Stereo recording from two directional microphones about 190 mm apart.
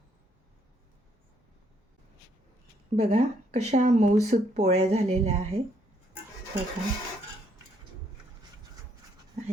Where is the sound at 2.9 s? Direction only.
35° right (ahead or behind).